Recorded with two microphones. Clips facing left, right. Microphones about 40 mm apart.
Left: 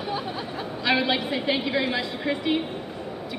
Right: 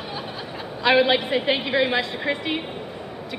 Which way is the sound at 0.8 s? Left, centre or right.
Centre.